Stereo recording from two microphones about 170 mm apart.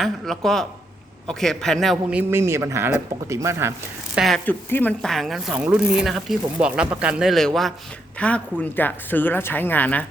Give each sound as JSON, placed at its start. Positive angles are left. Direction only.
{"t": 0.0, "sound": "speech", "side_deg": 0}
{"t": 4.1, "sound": "speech", "side_deg": 0}
{"t": 4.4, "sound": "speech", "side_deg": 10}